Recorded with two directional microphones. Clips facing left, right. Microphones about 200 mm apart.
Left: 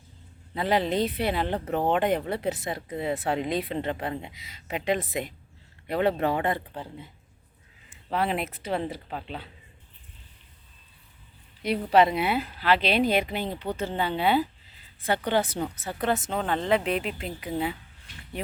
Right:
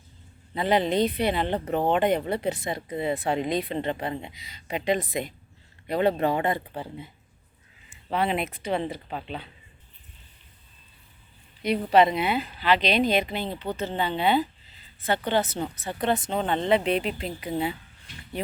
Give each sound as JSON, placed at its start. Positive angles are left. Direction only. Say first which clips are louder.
{"t": 0.5, "sound": "speech", "louder": "right 2 dB", "side_deg": 0}
{"t": 8.1, "sound": "speech", "louder": "right 1 dB", "side_deg": 0}
{"t": 11.6, "sound": "a woman's voice", "louder": "right 1 dB", "side_deg": 5}